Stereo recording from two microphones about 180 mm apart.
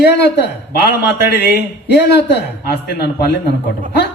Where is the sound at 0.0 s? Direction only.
65° left (ahead or behind).